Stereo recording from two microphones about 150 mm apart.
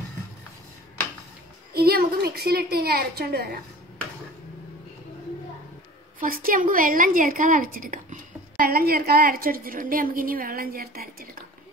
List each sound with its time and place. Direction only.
1.7 s a woman's voice: 90° right
6.1 s a woman's voice: 70° right (ahead or behind)